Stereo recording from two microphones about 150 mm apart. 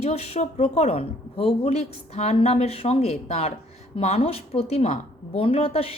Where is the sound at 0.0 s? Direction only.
45° left (ahead or behind).